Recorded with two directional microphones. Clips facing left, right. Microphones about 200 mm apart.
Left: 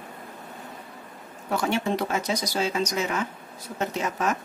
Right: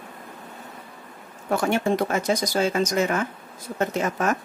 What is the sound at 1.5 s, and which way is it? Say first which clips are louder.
Speech: right 3 dB; 50° right (ahead or behind).